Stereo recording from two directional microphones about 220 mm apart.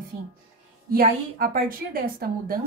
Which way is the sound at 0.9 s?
40° right (ahead or behind).